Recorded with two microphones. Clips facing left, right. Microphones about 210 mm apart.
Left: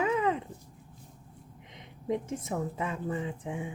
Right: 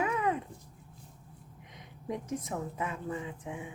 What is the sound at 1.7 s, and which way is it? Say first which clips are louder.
A woman's voice: left 6 dB; 25° left (ahead or behind).